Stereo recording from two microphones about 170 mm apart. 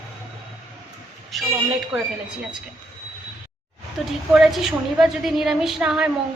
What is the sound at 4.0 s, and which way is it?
A woman's voice, centre (ahead or behind).